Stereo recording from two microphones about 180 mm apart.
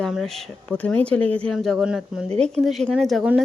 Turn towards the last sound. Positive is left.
turn(degrees=0)  # may be behind; listen again after turning